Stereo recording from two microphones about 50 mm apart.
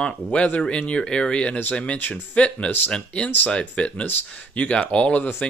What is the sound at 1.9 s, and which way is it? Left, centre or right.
Speech, left.